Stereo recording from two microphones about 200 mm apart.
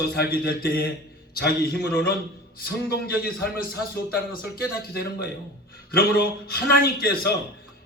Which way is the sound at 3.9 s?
50° left (ahead or behind).